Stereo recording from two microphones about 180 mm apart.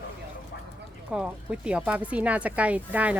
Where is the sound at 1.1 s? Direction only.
5° right (ahead or behind).